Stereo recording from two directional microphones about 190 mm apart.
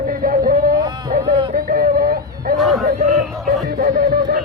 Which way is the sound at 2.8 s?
40° right (ahead or behind).